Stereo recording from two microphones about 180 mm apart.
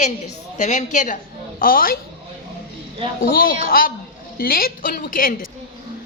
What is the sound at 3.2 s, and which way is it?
A woman's voice, 55° left (ahead or behind).